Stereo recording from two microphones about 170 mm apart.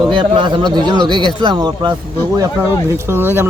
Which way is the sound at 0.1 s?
30° right (ahead or behind).